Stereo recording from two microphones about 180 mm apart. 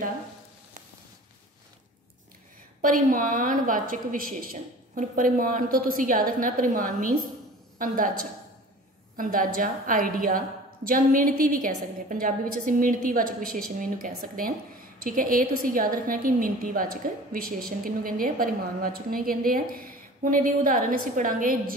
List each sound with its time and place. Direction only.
2.8 s a woman's voice: 50° right (ahead or behind)